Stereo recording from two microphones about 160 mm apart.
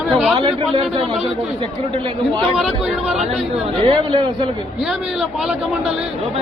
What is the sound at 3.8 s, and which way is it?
Speech, 30° right (ahead or behind).